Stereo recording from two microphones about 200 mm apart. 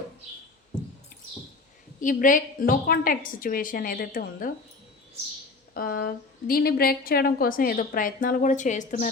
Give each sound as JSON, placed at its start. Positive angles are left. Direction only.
{"t": 2.0, "sound": "a woman's voice", "side_deg": 40}
{"t": 5.7, "sound": "a woman's voice", "side_deg": 45}